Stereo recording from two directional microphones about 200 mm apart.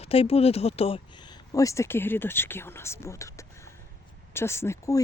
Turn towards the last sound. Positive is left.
turn(degrees=15)  # may be behind; listen again after turning